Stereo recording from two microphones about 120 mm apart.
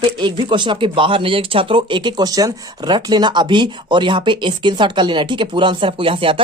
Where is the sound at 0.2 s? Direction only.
40° right (ahead or behind).